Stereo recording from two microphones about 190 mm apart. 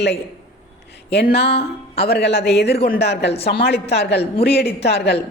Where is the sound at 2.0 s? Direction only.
60° left (ahead or behind).